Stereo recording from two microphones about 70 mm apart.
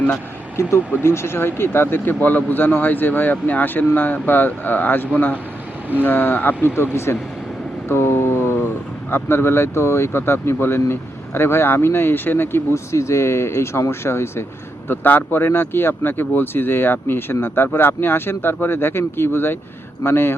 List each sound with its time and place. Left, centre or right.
0.5 s speech: left
6.9 s speech: left
7.9 s vehicle: left
9.0 s speech: left
12.7 s speech: left